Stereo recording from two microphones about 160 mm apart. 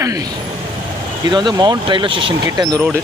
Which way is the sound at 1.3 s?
25° right (ahead or behind).